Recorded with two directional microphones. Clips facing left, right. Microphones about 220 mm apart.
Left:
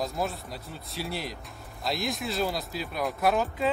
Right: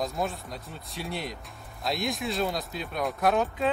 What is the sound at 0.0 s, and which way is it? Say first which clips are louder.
Speech: even; centre (ahead or behind).